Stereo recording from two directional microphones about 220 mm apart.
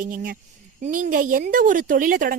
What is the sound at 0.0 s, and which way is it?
A woman's voice, 40° right (ahead or behind).